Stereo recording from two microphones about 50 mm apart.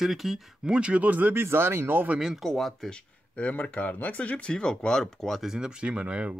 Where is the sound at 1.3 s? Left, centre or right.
Right.